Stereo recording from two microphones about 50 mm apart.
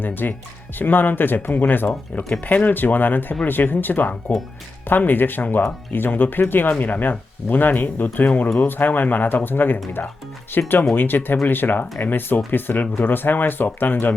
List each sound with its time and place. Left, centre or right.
0.0 s speech: left